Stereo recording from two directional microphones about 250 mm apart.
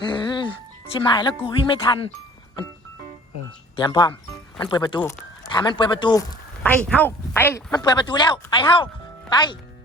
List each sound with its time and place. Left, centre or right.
0.0 s music: centre
0.9 s speech: centre
3.8 s speech: centre
6.6 s speech: centre